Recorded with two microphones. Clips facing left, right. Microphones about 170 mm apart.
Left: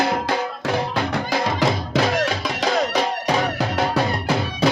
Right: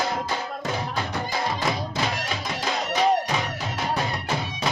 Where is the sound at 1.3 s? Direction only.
90° left.